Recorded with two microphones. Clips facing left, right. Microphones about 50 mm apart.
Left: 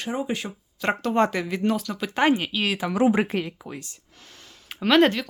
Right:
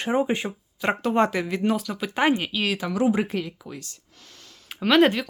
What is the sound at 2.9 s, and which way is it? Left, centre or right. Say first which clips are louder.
Speech: left 3 dB; left.